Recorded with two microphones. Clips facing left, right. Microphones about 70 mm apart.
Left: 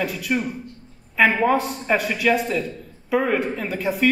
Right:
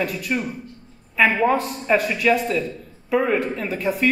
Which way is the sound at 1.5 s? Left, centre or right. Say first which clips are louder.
Right 1 dB; centre.